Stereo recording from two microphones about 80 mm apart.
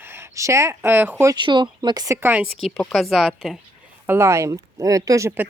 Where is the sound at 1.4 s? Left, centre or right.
Right.